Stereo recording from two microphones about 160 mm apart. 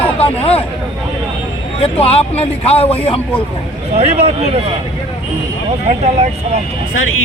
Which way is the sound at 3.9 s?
40° right (ahead or behind).